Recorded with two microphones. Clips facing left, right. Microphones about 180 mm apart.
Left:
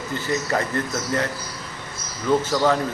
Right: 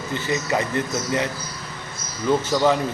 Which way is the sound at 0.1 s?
15° right (ahead or behind).